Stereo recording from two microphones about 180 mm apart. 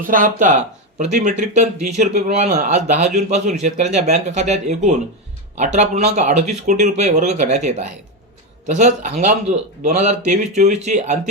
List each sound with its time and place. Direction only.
0.1 s speech: 45° right (ahead or behind)